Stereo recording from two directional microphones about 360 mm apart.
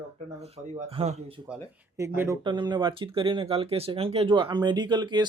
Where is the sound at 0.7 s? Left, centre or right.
Centre.